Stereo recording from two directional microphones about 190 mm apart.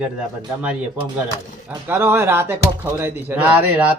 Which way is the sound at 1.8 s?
10° right (ahead or behind).